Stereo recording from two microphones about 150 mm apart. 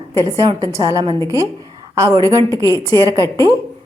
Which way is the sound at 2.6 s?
25° left (ahead or behind).